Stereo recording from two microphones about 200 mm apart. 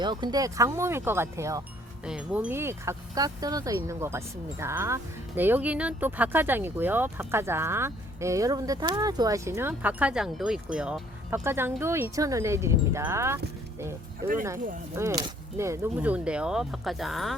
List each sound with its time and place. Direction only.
0.0 s speech: 20° right (ahead or behind)
14.9 s speech: 15° right (ahead or behind); by 17.3 s centre (ahead or behind)